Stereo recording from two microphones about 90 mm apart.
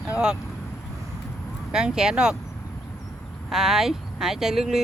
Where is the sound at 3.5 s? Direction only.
5° right (ahead or behind).